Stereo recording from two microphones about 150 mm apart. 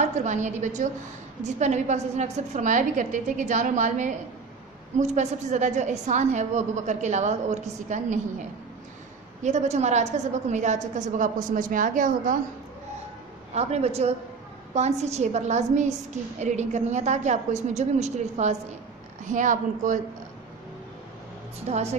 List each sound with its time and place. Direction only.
0.0 s a woman's voice: 55° right (ahead or behind)
9.4 s a woman's voice: 50° right (ahead or behind)
13.6 s a woman's voice: 45° right (ahead or behind)
21.6 s a woman's voice: 45° right (ahead or behind)